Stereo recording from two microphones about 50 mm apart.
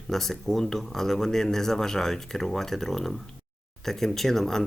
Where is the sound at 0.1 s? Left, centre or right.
Centre.